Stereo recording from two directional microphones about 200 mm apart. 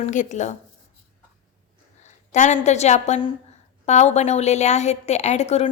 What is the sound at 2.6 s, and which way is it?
A woman's voice, 35° left (ahead or behind).